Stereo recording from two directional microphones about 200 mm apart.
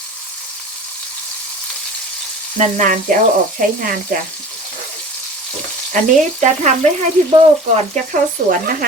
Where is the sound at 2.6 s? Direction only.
40° right (ahead or behind).